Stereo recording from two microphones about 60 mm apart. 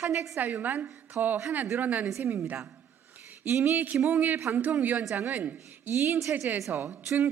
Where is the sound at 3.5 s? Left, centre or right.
Right.